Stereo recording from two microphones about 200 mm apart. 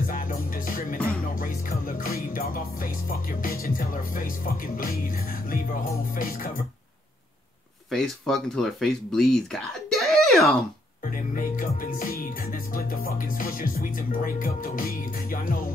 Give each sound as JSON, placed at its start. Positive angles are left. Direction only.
{"t": 0.0, "sound": "music", "side_deg": 45}
{"t": 7.9, "sound": "speech", "side_deg": 0}
{"t": 11.1, "sound": "music", "side_deg": 45}